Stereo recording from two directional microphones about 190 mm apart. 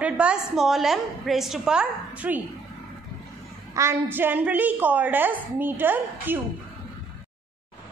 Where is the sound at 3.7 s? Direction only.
15° right (ahead or behind).